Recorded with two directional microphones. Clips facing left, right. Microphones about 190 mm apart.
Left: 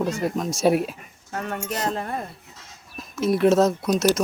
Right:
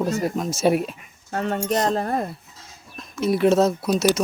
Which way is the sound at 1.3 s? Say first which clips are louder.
Right 6 dB; 30° right (ahead or behind).